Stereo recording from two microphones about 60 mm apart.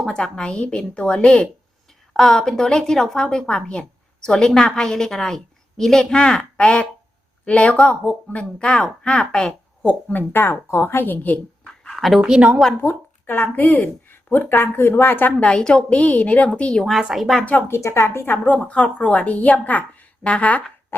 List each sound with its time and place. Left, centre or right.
0.0 s a woman's voice: centre
9.8 s speech: left
10.7 s speech: left
11.6 s a sound: centre
11.9 s speech: centre
12.2 s speech: centre
12.8 s speech: left
13.3 s speech: left
15.4 s a woman's voice: centre
17.0 s speech: centre
17.7 s a woman's voice: left
18.5 s a woman's voice: centre